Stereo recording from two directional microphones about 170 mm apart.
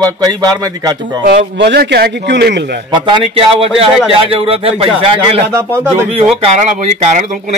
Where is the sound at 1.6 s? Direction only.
90° right.